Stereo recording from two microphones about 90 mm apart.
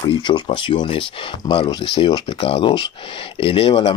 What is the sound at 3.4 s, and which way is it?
Speech, 85° left.